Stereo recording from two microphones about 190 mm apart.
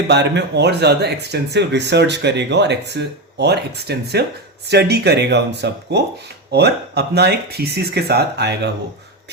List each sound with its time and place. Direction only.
0.1 s speech: 65° right (ahead or behind)